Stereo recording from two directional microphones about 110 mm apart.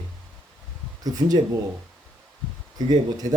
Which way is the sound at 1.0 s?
35° right (ahead or behind).